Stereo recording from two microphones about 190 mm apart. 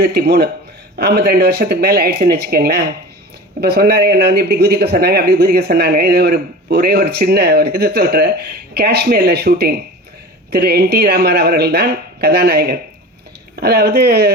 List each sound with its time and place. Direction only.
0.0 s speech: 55° right (ahead or behind)